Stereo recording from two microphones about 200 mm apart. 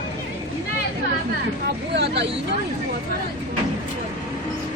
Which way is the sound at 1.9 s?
60° right (ahead or behind).